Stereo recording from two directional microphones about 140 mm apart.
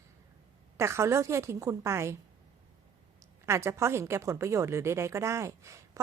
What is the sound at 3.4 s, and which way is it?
A woman's voice, 20° right (ahead or behind).